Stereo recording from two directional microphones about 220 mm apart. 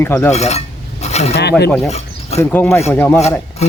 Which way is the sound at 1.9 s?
30° left (ahead or behind).